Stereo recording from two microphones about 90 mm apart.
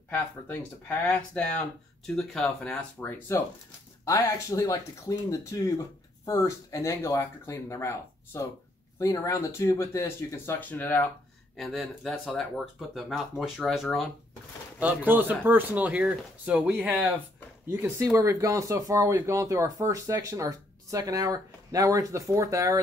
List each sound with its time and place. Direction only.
0.6 s speech: 10° left (ahead or behind)
2.4 s speech: 15° left (ahead or behind)
4.0 s speech: 35° left (ahead or behind); by 11.1 s 20° left (ahead or behind)
11.5 s speech: centre (ahead or behind)
14.8 s speech: 20° right (ahead or behind)
17.6 s speech: 30° right (ahead or behind)